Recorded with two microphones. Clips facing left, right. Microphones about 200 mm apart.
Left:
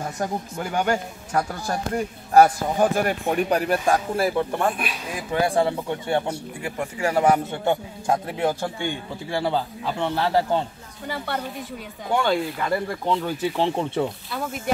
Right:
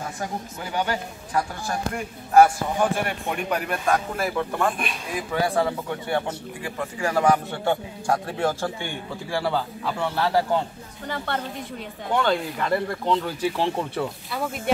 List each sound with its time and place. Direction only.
0.6 s speech: 50° left (ahead or behind); by 4.3 s 30° left (ahead or behind)
4.8 s speech: 5° left (ahead or behind)
5.3 s a man's voice: 25° left (ahead or behind)
14.3 s speech: centre (ahead or behind)